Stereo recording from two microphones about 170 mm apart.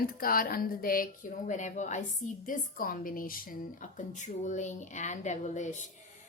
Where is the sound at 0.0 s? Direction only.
60° left (ahead or behind).